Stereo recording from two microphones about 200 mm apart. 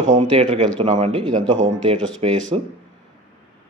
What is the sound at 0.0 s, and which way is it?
Speech, 35° right (ahead or behind).